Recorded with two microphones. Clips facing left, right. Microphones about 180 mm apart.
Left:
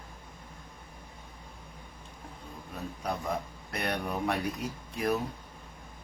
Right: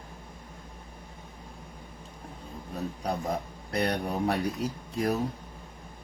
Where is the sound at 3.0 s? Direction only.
40° right (ahead or behind).